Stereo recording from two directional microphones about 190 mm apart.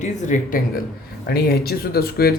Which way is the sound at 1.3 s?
55° left (ahead or behind).